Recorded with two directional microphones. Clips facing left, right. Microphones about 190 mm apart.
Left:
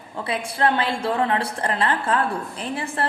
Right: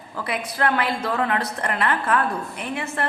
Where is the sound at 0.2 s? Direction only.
30° left (ahead or behind).